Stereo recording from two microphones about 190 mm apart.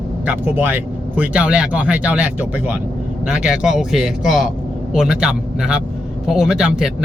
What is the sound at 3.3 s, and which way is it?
Speech, 5° right (ahead or behind).